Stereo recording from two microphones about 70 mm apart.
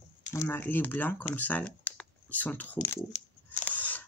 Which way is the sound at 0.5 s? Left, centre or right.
Left.